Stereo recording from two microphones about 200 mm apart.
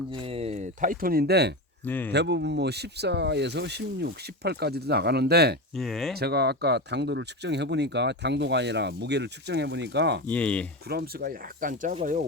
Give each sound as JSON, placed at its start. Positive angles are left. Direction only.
{"t": 0.1, "sound": "speech", "side_deg": -25}
{"t": 1.8, "sound": "speech", "side_deg": 10}
{"t": 2.1, "sound": "speech", "side_deg": -60}
{"t": 5.7, "sound": "speech", "side_deg": 0}
{"t": 6.1, "sound": "speech", "side_deg": -55}
{"t": 10.2, "sound": "speech", "side_deg": 5}
{"t": 10.8, "sound": "speech", "side_deg": -55}